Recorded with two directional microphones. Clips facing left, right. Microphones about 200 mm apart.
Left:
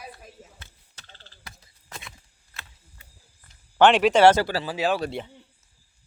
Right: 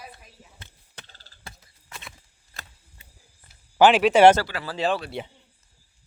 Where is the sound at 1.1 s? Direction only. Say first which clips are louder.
Right 2 dB; 35° right (ahead or behind).